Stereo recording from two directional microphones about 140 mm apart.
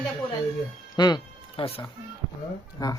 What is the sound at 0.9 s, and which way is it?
Music, 30° left (ahead or behind).